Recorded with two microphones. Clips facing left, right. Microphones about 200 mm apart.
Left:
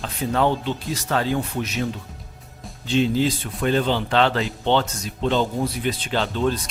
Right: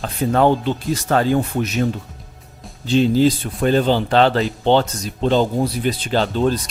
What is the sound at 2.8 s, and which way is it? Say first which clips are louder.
Speech: right 5 dB; 40° right (ahead or behind).